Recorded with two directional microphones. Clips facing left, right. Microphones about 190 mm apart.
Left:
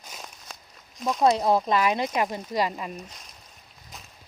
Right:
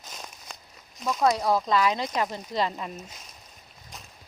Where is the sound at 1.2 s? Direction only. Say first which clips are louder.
Left 2 dB; 25° left (ahead or behind).